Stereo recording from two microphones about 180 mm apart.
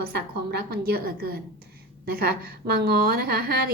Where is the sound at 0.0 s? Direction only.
60° right (ahead or behind).